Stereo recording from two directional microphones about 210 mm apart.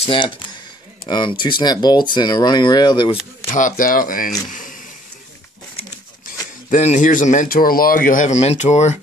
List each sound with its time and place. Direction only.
0.0 s speech: 25° left (ahead or behind)
3.5 s speech: 40° left (ahead or behind)
4.5 s a sound: 40° left (ahead or behind)
6.7 s speech: 35° left (ahead or behind)